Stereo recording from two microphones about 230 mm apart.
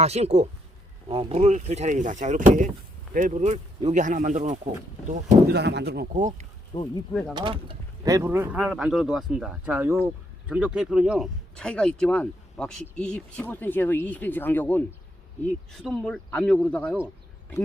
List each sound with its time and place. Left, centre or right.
0.0 s speech: right
5.5 s speech: right
6.7 s speech: left
7.1 s speech: centre
7.3 s speech: right; by 17.0 s centre